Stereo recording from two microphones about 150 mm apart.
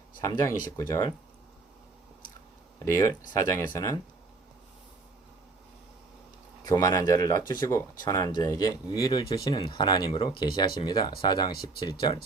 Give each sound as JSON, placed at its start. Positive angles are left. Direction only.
{"t": 0.3, "sound": "speech", "side_deg": 20}
{"t": 2.7, "sound": "speech", "side_deg": 20}
{"t": 6.7, "sound": "speech", "side_deg": 25}